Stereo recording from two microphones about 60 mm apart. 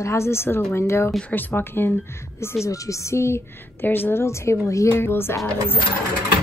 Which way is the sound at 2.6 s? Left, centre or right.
Left.